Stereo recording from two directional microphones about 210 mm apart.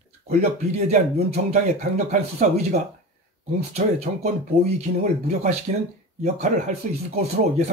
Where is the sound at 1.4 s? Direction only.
35° right (ahead or behind).